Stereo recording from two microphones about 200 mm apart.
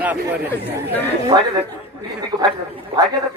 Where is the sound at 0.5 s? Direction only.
10° left (ahead or behind).